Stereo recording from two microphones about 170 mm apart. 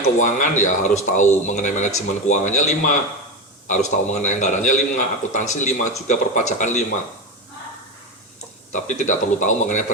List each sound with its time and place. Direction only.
0.2 s a man's voice: 45° left (ahead or behind)
8.7 s a man's voice: 45° left (ahead or behind)